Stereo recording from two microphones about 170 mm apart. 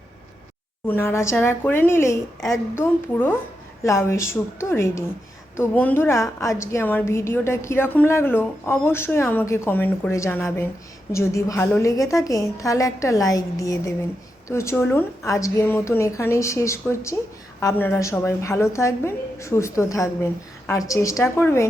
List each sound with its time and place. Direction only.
0.9 s a woman's voice: 15° left (ahead or behind)